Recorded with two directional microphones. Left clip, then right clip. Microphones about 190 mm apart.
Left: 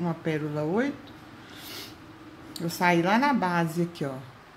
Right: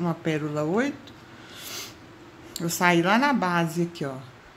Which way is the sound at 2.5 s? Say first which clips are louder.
Right 2 dB; 15° right (ahead or behind).